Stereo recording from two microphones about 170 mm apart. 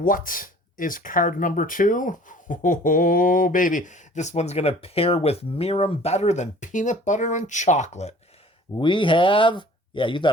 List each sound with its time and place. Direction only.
0.0 s speech: 55° left (ahead or behind)
8.8 s speech: 30° left (ahead or behind)